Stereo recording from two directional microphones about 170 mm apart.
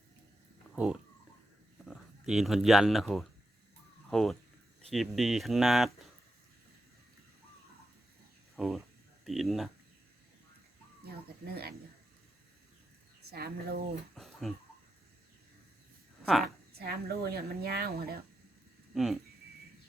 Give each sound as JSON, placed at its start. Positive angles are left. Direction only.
{"t": 0.8, "sound": "speech", "side_deg": -5}
{"t": 8.5, "sound": "speech", "side_deg": 0}
{"t": 11.0, "sound": "a sound", "side_deg": -65}
{"t": 13.3, "sound": "a woman's voice", "side_deg": -65}
{"t": 14.2, "sound": "a sound", "side_deg": 0}
{"t": 16.2, "sound": "a woman's voice", "side_deg": 0}
{"t": 16.7, "sound": "a woman's voice", "side_deg": -65}
{"t": 18.9, "sound": "speech", "side_deg": 0}